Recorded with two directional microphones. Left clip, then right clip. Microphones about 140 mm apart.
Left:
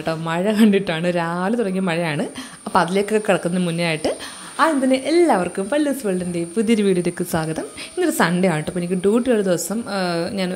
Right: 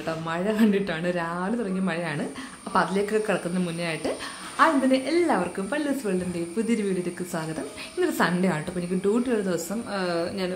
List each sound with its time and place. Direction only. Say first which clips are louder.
0.0 s a woman's voice: left 6 dB; 50° left (ahead or behind)
8.0 s a woman's voice: left 6 dB; 45° left (ahead or behind)